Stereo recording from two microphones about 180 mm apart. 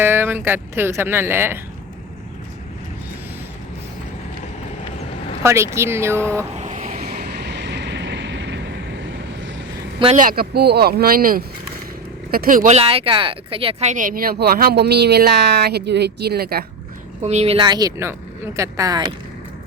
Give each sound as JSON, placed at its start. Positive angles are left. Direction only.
{"t": 0.0, "sound": "speech", "side_deg": -15}
{"t": 5.4, "sound": "speech", "side_deg": -15}
{"t": 6.6, "sound": "vehicle", "side_deg": -40}
{"t": 7.0, "sound": "vehicle", "side_deg": -60}
{"t": 10.2, "sound": "speech", "side_deg": -55}
{"t": 17.2, "sound": "speech", "side_deg": -35}